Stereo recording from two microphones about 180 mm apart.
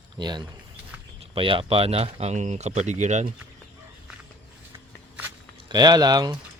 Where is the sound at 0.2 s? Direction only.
25° right (ahead or behind); by 3.2 s 40° right (ahead or behind).